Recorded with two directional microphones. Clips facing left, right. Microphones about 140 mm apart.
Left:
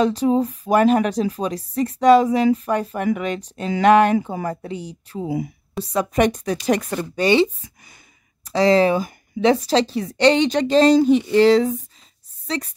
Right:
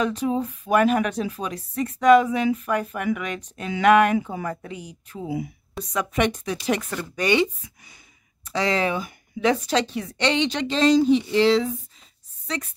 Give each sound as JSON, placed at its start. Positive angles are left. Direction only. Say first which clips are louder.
{"t": 0.0, "sound": "a woman's voice", "louder": "left 6 dB", "side_deg": 35}